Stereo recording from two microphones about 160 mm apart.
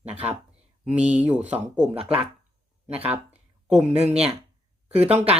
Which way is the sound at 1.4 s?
45° right (ahead or behind).